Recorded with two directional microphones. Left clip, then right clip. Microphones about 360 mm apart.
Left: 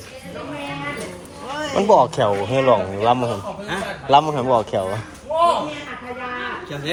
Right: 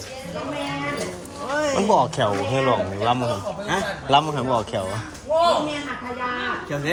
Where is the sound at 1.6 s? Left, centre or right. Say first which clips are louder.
Left 4 dB; centre.